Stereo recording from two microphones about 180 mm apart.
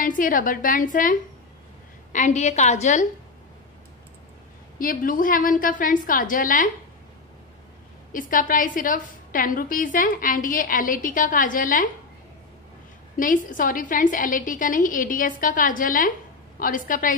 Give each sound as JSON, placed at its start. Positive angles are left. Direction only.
{"t": 0.0, "sound": "a woman's voice", "side_deg": 50}
{"t": 2.1, "sound": "a woman's voice", "side_deg": 40}
{"t": 4.7, "sound": "a woman's voice", "side_deg": 50}
{"t": 8.1, "sound": "a woman's voice", "side_deg": 50}
{"t": 13.1, "sound": "a woman's voice", "side_deg": 50}